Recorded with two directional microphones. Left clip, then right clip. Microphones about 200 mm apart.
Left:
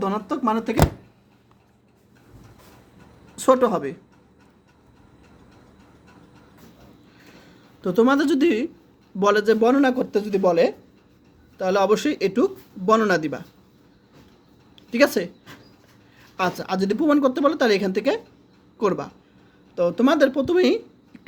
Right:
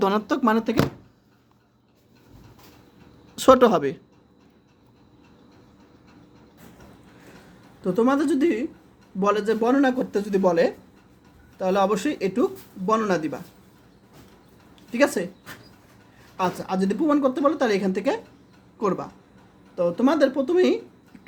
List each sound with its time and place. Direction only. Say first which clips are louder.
0.0 s speech: right 2 dB; 25° right (ahead or behind)
3.3 s speech: right 3 dB; 25° right (ahead or behind)
7.8 s speech: left 3 dB; 25° left (ahead or behind)
14.8 s speech: left 3 dB; 20° left (ahead or behind)
16.4 s speech: left 2 dB; 25° left (ahead or behind)